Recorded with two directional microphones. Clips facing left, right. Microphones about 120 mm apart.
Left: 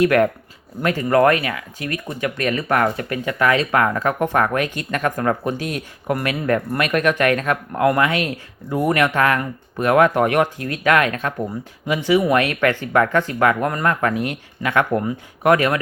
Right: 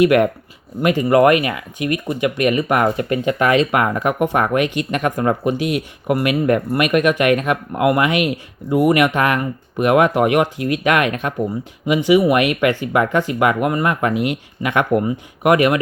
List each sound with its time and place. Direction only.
0.0 s speech: 15° right (ahead or behind)